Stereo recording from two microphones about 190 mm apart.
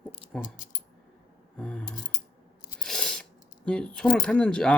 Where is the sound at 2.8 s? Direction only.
5° left (ahead or behind).